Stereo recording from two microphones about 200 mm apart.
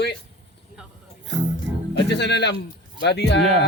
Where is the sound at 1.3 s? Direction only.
65° right (ahead or behind).